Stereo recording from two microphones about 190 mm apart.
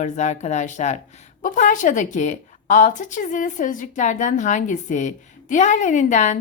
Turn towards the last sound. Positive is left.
turn(degrees=40)  # may be behind; listen again after turning